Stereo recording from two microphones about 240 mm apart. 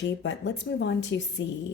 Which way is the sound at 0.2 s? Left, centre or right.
Left.